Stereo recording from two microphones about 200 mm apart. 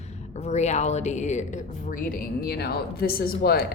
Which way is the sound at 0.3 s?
35° left (ahead or behind).